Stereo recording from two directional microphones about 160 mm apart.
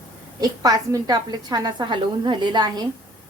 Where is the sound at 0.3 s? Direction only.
25° right (ahead or behind).